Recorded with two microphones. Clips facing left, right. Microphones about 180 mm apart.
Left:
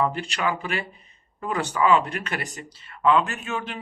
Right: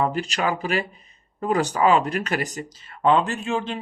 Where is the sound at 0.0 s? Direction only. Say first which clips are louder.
Right 2 dB; 40° right (ahead or behind).